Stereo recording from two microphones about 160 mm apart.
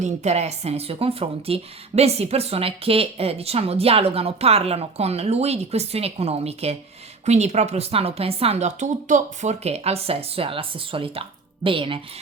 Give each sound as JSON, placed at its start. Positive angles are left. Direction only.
{"t": 0.0, "sound": "a woman's voice", "side_deg": -45}